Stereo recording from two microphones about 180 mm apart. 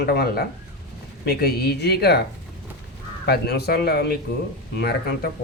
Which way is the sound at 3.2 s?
65° left (ahead or behind).